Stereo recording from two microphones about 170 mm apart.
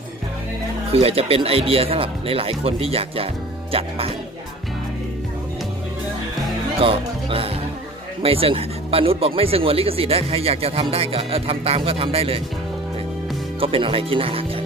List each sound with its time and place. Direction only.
0.9 s speech: 35° right (ahead or behind)
6.8 s music: 35° right (ahead or behind)
8.2 s speech: 35° right (ahead or behind)
13.6 s speech: 30° right (ahead or behind)